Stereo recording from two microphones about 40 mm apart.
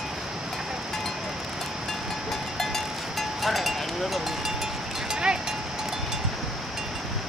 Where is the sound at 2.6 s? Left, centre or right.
Centre.